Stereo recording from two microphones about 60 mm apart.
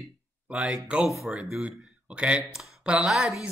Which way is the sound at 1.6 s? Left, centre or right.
Centre.